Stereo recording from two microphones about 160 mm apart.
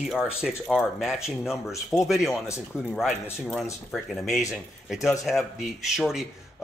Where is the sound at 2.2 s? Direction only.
20° left (ahead or behind).